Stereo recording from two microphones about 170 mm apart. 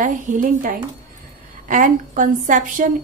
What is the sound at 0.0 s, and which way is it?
A woman's voice, 50° right (ahead or behind).